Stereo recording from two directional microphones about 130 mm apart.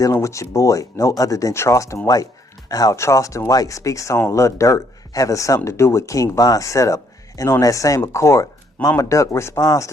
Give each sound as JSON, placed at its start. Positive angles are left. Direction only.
{"t": 0.0, "sound": "speech", "side_deg": 25}